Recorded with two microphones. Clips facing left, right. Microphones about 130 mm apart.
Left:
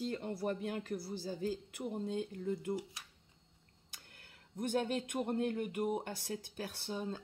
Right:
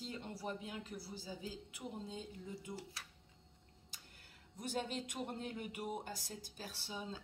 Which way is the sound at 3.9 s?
60° left (ahead or behind).